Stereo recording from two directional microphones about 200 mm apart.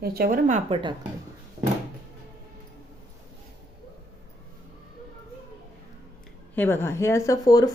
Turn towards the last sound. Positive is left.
turn(degrees=20)  # may be behind; listen again after turning